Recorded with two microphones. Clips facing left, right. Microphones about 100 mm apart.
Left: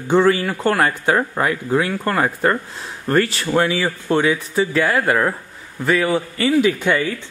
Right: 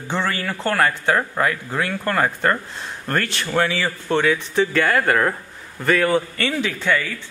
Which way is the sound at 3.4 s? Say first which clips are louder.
Left 3 dB; 15° left (ahead or behind).